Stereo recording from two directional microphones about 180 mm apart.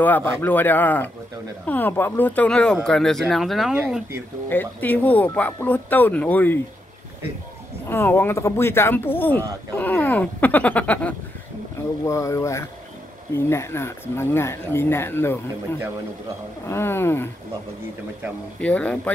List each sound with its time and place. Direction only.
0.0 s speech: 10° left (ahead or behind)
4.5 s speech: 10° left (ahead or behind)
7.9 s speech: 10° left (ahead or behind)
16.6 s speech: 15° left (ahead or behind)
18.6 s speech: 10° left (ahead or behind)